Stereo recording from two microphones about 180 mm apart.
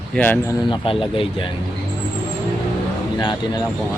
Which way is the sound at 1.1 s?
30° left (ahead or behind).